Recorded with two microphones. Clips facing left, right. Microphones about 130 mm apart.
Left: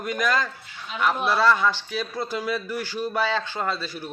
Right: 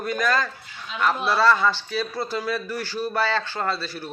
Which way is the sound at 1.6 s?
15° left (ahead or behind).